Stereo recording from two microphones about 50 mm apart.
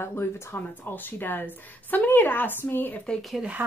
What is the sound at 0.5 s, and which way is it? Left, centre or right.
A woman's voice, left.